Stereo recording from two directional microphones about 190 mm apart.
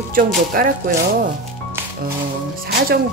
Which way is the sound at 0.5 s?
50° right (ahead or behind).